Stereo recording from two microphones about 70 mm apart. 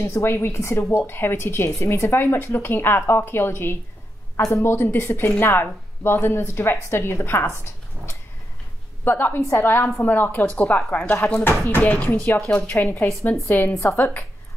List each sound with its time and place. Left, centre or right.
0.0 s speech: left
9.0 s a woman's voice: left